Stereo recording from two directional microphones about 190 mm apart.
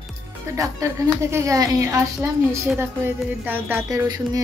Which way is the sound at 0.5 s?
15° right (ahead or behind).